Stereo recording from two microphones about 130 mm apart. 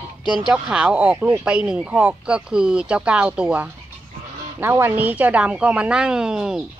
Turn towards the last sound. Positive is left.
turn(degrees=-5)  # may be behind; listen again after turning